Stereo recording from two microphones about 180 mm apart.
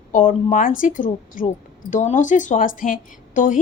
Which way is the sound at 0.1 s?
50° left (ahead or behind).